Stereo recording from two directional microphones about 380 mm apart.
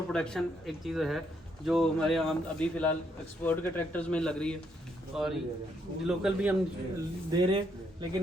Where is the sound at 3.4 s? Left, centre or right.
Centre.